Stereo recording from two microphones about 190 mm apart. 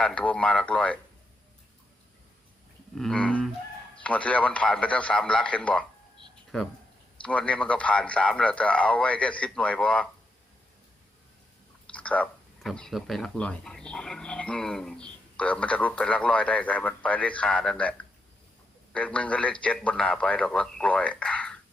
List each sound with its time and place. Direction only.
0.0 s speech: 5° left (ahead or behind)
2.9 s a man's voice: 5° left (ahead or behind)
7.2 s a man's voice: 5° left (ahead or behind)
11.9 s speech: 5° left (ahead or behind)
18.9 s a man's voice: 5° left (ahead or behind)